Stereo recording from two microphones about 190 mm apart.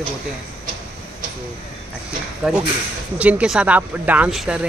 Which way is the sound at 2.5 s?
Centre (ahead or behind).